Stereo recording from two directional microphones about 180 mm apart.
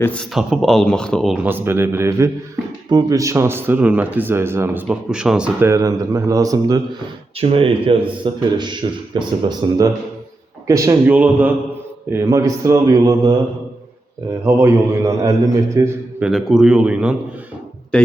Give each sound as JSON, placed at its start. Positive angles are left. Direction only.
{"t": 0.0, "sound": "a man's voice", "side_deg": 10}
{"t": 1.5, "sound": "speech", "side_deg": -10}
{"t": 7.3, "sound": "speech", "side_deg": -30}
{"t": 14.4, "sound": "speech", "side_deg": -15}
{"t": 16.2, "sound": "speech", "side_deg": -5}
{"t": 17.9, "sound": "speech", "side_deg": 5}